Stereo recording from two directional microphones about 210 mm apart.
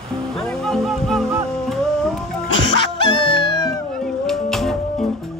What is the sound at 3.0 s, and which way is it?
Music, 20° left (ahead or behind).